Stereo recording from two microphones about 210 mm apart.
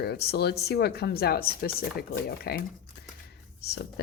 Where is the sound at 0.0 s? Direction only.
50° left (ahead or behind).